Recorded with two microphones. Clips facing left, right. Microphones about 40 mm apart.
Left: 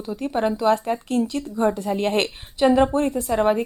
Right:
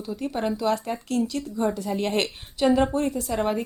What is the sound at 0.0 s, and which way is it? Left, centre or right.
A woman's voice, left.